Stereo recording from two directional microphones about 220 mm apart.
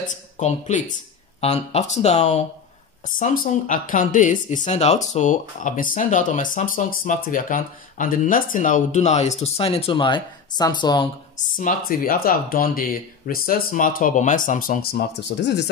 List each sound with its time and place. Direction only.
0.0 s speech: 30° left (ahead or behind)
11.3 s speech: 35° left (ahead or behind)